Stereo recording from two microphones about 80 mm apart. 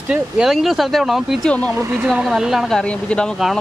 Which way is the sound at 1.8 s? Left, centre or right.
Right.